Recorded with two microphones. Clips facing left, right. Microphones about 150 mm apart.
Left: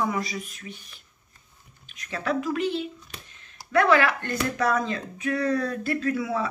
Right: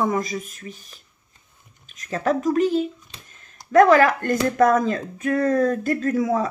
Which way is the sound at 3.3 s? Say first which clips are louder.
Right 2 dB; 45° right (ahead or behind).